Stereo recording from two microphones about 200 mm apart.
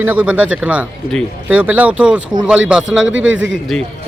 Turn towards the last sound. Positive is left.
turn(degrees=-75)  # may be behind; listen again after turning